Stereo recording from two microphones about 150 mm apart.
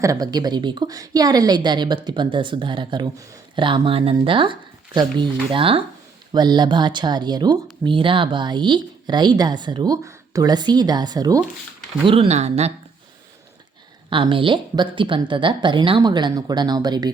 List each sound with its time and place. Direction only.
0.0 s a woman's voice: 25° right (ahead or behind)
12.3 s speech: 45° right (ahead or behind)
14.1 s a woman's voice: 35° right (ahead or behind)